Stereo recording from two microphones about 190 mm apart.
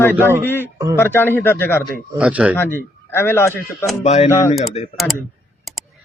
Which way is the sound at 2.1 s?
5° right (ahead or behind).